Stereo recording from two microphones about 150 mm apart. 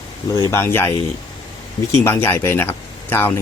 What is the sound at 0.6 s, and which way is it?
Speech, 15° left (ahead or behind).